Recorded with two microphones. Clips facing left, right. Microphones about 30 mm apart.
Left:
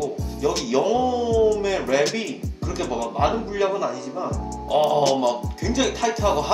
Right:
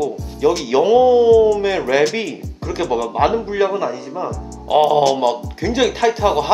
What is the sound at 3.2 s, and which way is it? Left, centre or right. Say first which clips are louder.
Speech: right 5 dB; right.